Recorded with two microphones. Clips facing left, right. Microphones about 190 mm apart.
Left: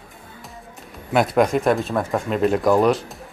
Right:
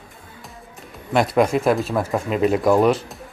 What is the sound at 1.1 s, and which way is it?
Speech, centre (ahead or behind).